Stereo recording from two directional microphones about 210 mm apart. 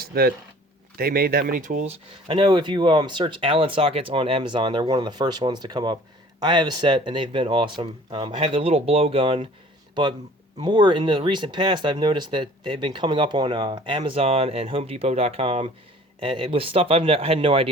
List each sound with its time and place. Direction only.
0.0 s speech: 45° right (ahead or behind); by 17.7 s 25° right (ahead or behind)